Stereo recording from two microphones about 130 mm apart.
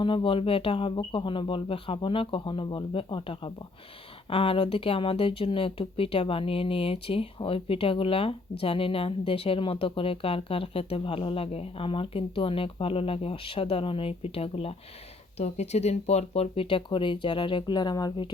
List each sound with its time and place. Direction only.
0.0 s speech: 40° left (ahead or behind)
15.4 s speech: 60° left (ahead or behind); by 18.3 s 30° left (ahead or behind)